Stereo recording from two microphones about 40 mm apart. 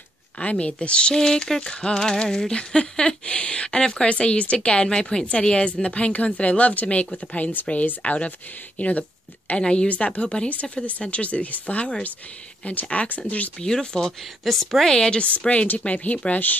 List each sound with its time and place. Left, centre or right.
0.4 s a woman's voice: left
9.6 s a woman's voice: left
12.9 s a woman's voice: left
13.6 s speech: centre
14.4 s a woman's voice: centre
15.0 s speech: left
15.4 s a woman's voice: left